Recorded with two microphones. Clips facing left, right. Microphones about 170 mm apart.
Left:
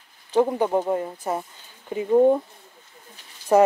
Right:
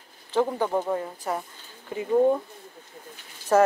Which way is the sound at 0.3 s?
20° left (ahead or behind).